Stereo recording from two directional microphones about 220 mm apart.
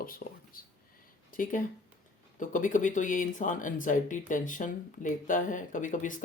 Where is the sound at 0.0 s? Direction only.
40° left (ahead or behind).